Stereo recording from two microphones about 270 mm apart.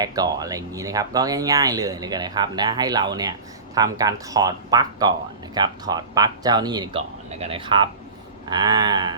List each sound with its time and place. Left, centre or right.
0.0 s speech: centre